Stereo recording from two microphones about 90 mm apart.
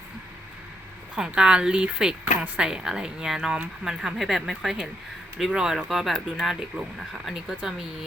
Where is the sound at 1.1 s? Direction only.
5° right (ahead or behind).